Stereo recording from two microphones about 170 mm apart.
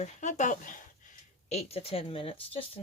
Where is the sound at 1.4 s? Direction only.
35° left (ahead or behind).